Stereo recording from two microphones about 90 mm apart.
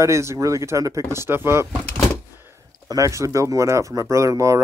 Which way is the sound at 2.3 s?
25° right (ahead or behind).